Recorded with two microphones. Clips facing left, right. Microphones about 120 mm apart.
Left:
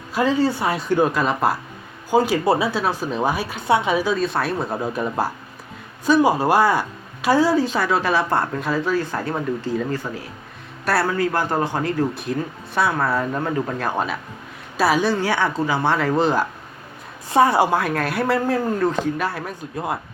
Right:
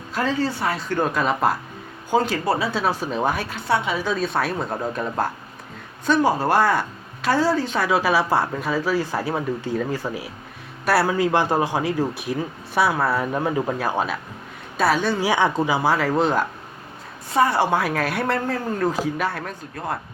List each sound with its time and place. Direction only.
0.1 s speech: 10° left (ahead or behind)
1.0 s speech: centre (ahead or behind)
2.7 s speech: centre (ahead or behind)
4.1 s speech: centre (ahead or behind)
7.8 s speech: 5° right (ahead or behind)
15.2 s speech: 15° right (ahead or behind); by 16.5 s centre (ahead or behind)
17.3 s speech: 15° left (ahead or behind)
17.7 s speech: centre (ahead or behind)